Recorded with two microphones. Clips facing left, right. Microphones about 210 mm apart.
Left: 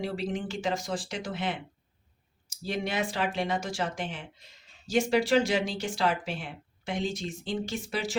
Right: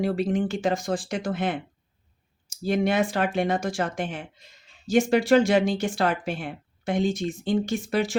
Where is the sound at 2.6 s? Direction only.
55° right (ahead or behind).